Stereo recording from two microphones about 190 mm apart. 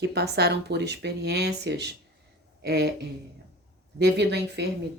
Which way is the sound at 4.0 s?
60° right (ahead or behind).